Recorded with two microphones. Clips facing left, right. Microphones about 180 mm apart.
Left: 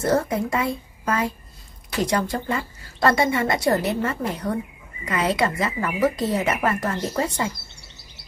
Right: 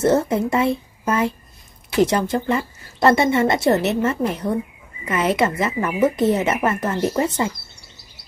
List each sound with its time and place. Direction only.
0.0 s speech: 25° right (ahead or behind)